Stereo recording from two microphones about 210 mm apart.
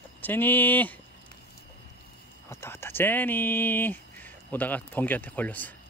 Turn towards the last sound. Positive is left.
turn(degrees=10)  # may be behind; listen again after turning